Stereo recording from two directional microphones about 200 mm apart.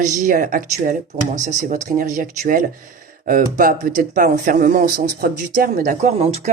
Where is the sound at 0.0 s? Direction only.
40° right (ahead or behind).